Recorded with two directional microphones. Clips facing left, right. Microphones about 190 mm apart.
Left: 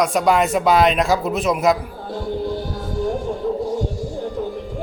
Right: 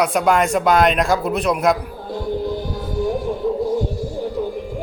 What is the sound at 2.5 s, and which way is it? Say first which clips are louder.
Music: right 1 dB; 15° right (ahead or behind).